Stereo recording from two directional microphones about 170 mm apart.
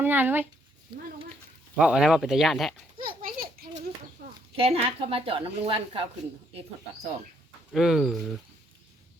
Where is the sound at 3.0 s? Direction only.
55° right (ahead or behind).